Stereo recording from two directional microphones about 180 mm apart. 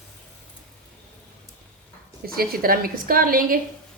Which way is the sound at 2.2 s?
55° right (ahead or behind).